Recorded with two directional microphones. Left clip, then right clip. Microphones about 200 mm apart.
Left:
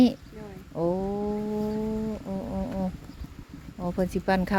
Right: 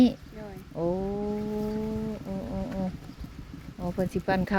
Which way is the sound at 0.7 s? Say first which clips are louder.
Left 2 dB; 25° left (ahead or behind).